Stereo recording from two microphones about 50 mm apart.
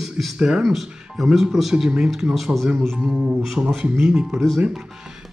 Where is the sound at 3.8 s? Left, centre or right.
Centre.